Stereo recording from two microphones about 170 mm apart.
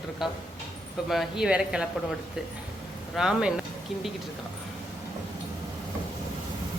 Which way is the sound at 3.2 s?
5° right (ahead or behind).